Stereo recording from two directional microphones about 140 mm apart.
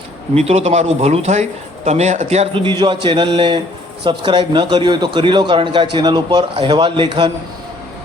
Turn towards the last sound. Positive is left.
turn(degrees=-35)  # may be behind; listen again after turning